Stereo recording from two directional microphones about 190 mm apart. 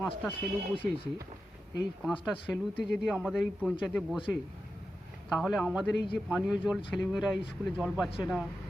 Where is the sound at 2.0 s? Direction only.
5° right (ahead or behind).